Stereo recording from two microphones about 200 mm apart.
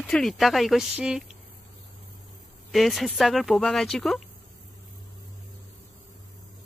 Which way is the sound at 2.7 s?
Centre (ahead or behind).